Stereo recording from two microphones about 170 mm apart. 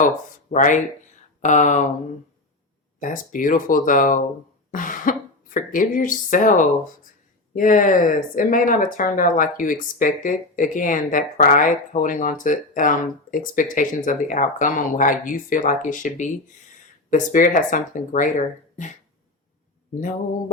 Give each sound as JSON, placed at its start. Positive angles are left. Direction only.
{"t": 0.5, "sound": "speech", "side_deg": 50}
{"t": 3.0, "sound": "speech", "side_deg": 50}